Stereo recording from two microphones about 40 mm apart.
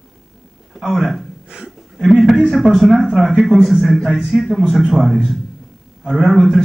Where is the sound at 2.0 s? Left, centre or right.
Centre.